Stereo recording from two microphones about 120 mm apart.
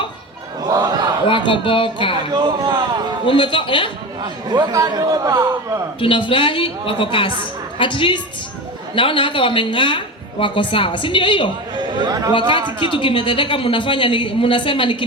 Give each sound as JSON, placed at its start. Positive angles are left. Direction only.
{"t": 0.7, "sound": "a sound", "side_deg": -35}
{"t": 1.3, "sound": "a woman's voice", "side_deg": 45}
{"t": 2.3, "sound": "a man's voice", "side_deg": -35}
{"t": 3.2, "sound": "a woman's voice", "side_deg": 45}
{"t": 4.2, "sound": "a man's voice", "side_deg": -35}
{"t": 6.0, "sound": "a woman's voice", "side_deg": 45}
{"t": 11.8, "sound": "a man's voice", "side_deg": -35}
{"t": 12.3, "sound": "a woman's voice", "side_deg": 40}